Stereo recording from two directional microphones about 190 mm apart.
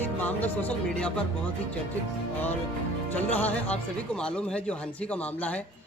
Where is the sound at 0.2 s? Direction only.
10° left (ahead or behind).